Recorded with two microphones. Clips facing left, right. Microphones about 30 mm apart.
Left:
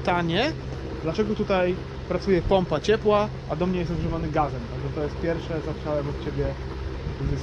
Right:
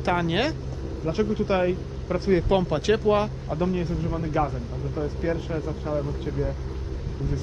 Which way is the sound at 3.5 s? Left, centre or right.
Centre.